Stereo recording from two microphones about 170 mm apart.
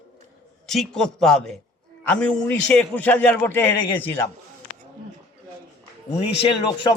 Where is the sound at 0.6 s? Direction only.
Centre (ahead or behind).